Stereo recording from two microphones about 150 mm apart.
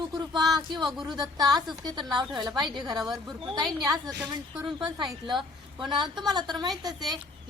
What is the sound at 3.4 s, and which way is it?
Speech, 30° right (ahead or behind).